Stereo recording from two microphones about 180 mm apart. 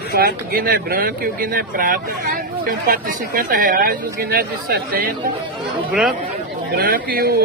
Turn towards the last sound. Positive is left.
turn(degrees=-55)  # may be behind; listen again after turning